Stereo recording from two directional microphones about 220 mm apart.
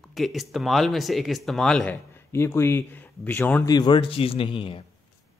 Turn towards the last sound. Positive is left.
turn(degrees=25)  # may be behind; listen again after turning